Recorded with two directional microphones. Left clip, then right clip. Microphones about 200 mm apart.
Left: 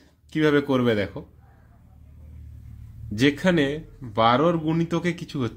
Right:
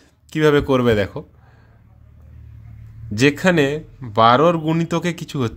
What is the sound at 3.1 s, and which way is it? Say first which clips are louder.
Speech: right 5 dB; 30° right (ahead or behind).